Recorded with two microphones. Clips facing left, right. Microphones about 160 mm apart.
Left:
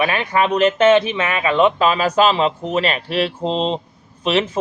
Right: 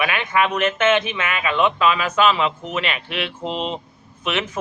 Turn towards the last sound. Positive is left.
turn(degrees=30)  # may be behind; listen again after turning